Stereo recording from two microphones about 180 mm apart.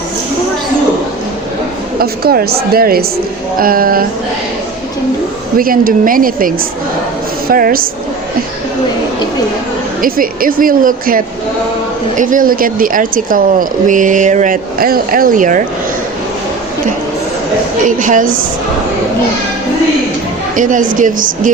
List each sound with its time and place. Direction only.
2.0 s a woman's voice: 60° right (ahead or behind)
5.5 s a woman's voice: 50° right (ahead or behind)
10.0 s speech: 50° right (ahead or behind)
17.8 s speech: 45° right (ahead or behind)
20.6 s speech: 45° right (ahead or behind)